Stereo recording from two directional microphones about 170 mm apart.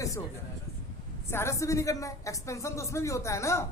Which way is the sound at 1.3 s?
15° left (ahead or behind).